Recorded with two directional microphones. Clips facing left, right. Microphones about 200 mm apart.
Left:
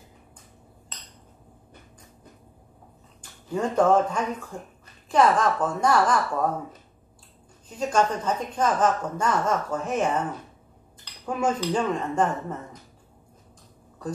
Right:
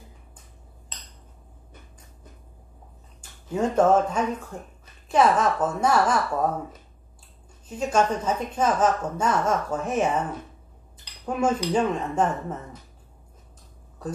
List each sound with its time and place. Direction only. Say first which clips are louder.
3.5 s a woman's voice: right 1 dB; 10° right (ahead or behind)
7.8 s a woman's voice: right 1 dB; 10° right (ahead or behind)
11.2 s a woman's voice: right 1 dB; 10° right (ahead or behind)